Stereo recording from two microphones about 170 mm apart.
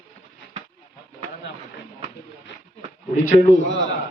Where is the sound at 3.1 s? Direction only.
55° left (ahead or behind).